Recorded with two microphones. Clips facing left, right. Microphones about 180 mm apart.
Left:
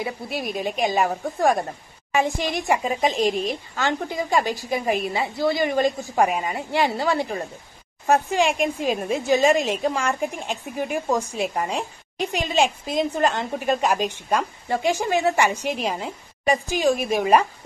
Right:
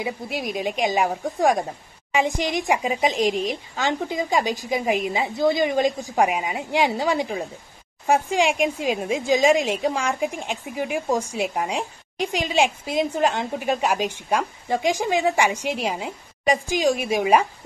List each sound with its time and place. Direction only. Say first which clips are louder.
0.0 s speech: even; 15° right (ahead or behind)